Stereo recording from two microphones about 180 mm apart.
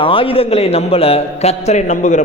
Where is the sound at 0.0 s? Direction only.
30° left (ahead or behind).